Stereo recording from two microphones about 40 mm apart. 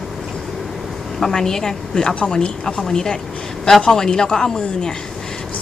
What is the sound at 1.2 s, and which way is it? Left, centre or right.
A woman's voice, centre.